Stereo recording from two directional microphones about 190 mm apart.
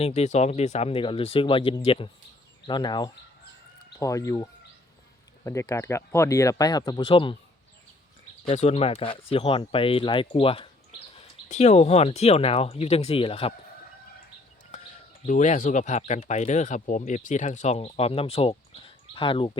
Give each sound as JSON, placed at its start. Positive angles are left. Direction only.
{"t": 0.0, "sound": "speech", "side_deg": 35}
{"t": 5.5, "sound": "speech", "side_deg": 15}
{"t": 8.4, "sound": "speech", "side_deg": 35}
{"t": 15.3, "sound": "speech", "side_deg": 40}